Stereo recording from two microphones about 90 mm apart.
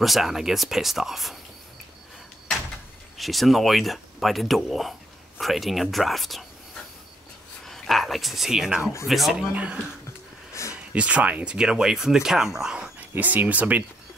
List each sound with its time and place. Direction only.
0.0 s speech: centre (ahead or behind)
3.2 s speech: centre (ahead or behind)
7.6 s speech: 5° left (ahead or behind)
9.5 s speech: 15° right (ahead or behind)
13.1 s speech: 20° right (ahead or behind)